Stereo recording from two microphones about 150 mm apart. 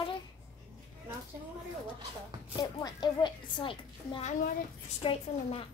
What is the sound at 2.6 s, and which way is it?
A woman's voice, 25° left (ahead or behind).